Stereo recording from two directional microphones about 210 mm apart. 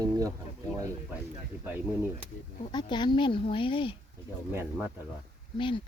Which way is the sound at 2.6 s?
20° left (ahead or behind).